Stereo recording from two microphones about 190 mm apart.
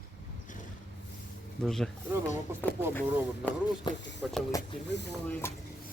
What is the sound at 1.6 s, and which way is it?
Speech, centre (ahead or behind).